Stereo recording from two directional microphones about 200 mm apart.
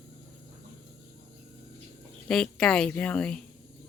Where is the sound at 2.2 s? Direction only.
5° left (ahead or behind).